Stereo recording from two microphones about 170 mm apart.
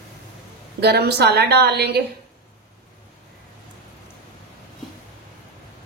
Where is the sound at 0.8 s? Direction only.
75° right (ahead or behind).